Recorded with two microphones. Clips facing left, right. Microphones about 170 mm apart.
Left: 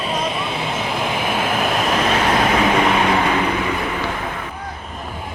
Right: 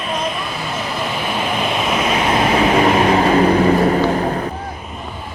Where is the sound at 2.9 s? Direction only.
35° right (ahead or behind).